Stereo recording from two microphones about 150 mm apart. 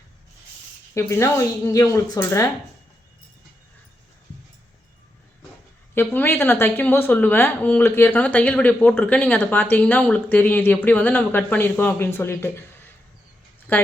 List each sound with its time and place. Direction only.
0.9 s a woman's voice: 15° left (ahead or behind)
5.9 s speech: 15° left (ahead or behind)